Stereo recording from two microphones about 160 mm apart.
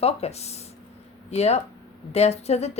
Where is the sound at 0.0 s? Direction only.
40° left (ahead or behind).